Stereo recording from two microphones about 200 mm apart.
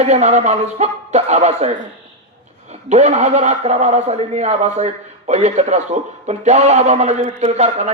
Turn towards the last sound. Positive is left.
turn(degrees=-35)  # may be behind; listen again after turning